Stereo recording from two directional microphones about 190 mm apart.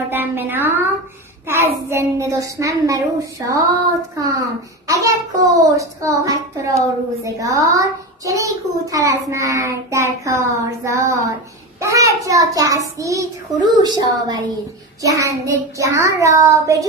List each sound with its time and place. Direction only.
0.1 s a child's voice: 10° right (ahead or behind)